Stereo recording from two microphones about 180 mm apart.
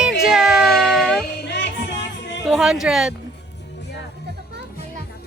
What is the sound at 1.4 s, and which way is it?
Music, 75° left (ahead or behind).